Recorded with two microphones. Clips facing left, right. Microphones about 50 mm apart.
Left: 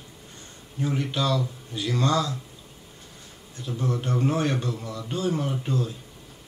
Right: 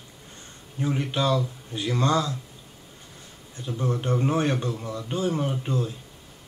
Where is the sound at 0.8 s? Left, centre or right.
Centre.